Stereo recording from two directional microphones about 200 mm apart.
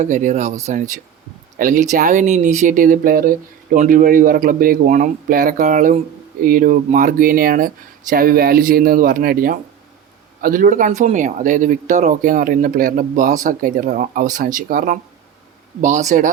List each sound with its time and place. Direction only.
0.0 s speech: 40° right (ahead or behind)